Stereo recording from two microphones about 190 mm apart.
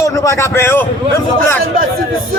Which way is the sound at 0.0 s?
15° left (ahead or behind).